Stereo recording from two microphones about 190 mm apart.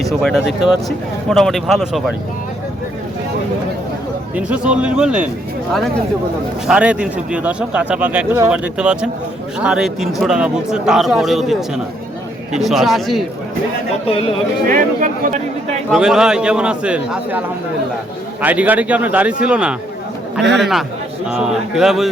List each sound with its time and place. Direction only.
0.0 s speech: centre (ahead or behind)
4.4 s speech: 5° right (ahead or behind)
6.7 s speech: 5° right (ahead or behind)
12.5 s speech: centre (ahead or behind)
14.1 s speech: 30° left (ahead or behind)
14.7 s speech: 45° right (ahead or behind)
15.9 s speech: 5° right (ahead or behind)
18.4 s speech: 10° right (ahead or behind)